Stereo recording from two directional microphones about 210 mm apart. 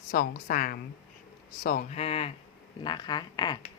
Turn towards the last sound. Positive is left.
turn(degrees=20)  # may be behind; listen again after turning